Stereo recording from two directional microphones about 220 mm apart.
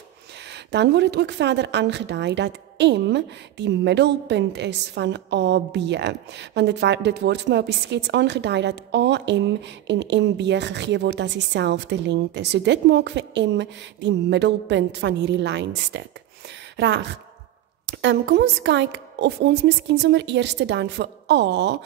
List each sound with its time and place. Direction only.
0.7 s a woman's voice: 50° right (ahead or behind)
16.7 s a sound: 55° right (ahead or behind)
17.8 s a woman's voice: 50° right (ahead or behind)